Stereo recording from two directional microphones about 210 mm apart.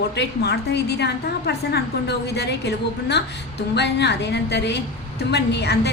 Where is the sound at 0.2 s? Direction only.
55° left (ahead or behind).